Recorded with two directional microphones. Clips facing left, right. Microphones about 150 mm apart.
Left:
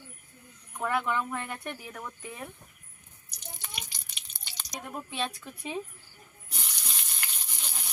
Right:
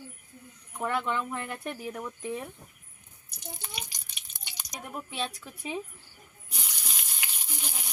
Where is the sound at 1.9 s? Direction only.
15° right (ahead or behind).